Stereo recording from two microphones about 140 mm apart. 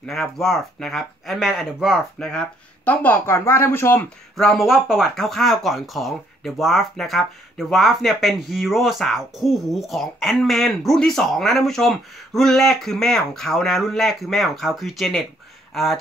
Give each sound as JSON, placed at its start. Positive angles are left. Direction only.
{"t": 0.0, "sound": "speech", "side_deg": 0}
{"t": 4.4, "sound": "speech", "side_deg": 0}